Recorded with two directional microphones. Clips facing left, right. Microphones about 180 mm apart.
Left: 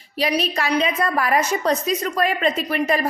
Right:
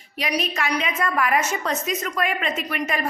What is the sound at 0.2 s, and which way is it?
A woman's voice, 35° left (ahead or behind).